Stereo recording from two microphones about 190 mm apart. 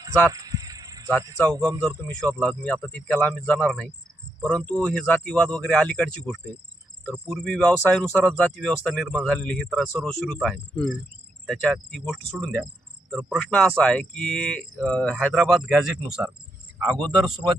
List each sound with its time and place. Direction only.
0.3 s a sound: 20° right (ahead or behind)
1.2 s speech: 20° right (ahead or behind)
2.0 s speech: 5° left (ahead or behind)